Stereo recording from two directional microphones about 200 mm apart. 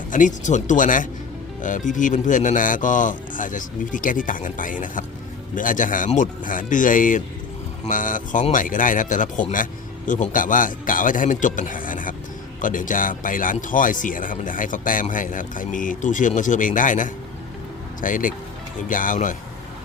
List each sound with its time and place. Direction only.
0.1 s speech: 40° left (ahead or behind)